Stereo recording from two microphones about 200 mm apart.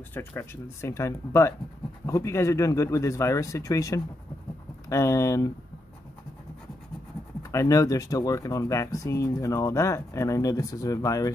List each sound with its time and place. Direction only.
0.1 s speech: 10° left (ahead or behind)
7.5 s speech: 15° left (ahead or behind)